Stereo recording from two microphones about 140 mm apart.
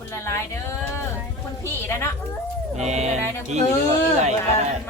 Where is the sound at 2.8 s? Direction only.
55° right (ahead or behind).